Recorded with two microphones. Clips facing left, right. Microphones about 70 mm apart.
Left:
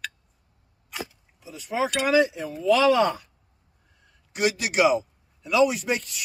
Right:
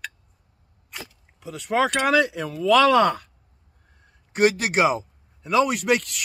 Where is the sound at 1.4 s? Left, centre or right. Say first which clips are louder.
Right 5 dB; right.